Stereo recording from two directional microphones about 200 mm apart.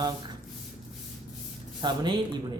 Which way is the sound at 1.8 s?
20° right (ahead or behind).